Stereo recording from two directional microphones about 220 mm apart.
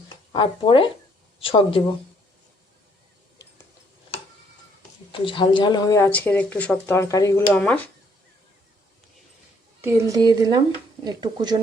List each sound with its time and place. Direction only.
0.3 s speech: 20° left (ahead or behind)
5.1 s speech: 20° left (ahead or behind); by 7.8 s 5° left (ahead or behind)
9.8 s speech: 15° right (ahead or behind)